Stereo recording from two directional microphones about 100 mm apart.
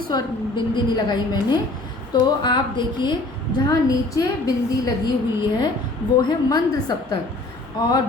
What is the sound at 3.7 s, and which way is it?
Speech, 40° left (ahead or behind).